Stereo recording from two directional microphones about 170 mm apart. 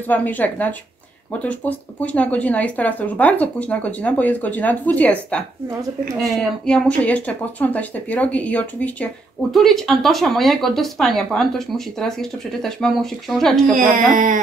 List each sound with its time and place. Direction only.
0.1 s speech: 10° left (ahead or behind)
13.7 s music: 50° right (ahead or behind)